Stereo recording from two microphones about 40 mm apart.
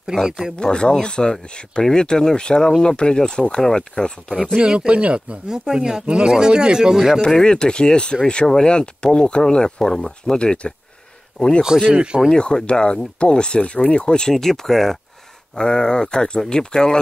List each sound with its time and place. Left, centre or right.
0.1 s speech: centre
0.6 s speech: left
4.6 s speech: right
5.5 s speech: centre
7.2 s speech: centre
11.9 s speech: right
12.3 s speech: centre
14.3 s speech: centre